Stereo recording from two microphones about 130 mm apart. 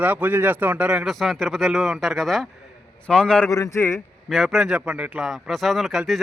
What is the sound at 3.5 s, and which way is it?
Speech, 25° left (ahead or behind).